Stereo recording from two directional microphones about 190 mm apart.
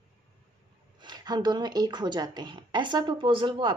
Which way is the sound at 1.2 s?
20° right (ahead or behind).